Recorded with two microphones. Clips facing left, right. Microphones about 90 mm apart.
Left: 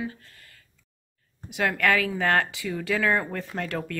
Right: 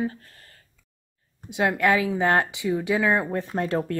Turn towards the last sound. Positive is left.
turn(degrees=-30)  # may be behind; listen again after turning